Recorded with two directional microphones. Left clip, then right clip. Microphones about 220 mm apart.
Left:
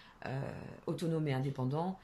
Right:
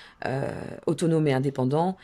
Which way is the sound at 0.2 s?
40° right (ahead or behind).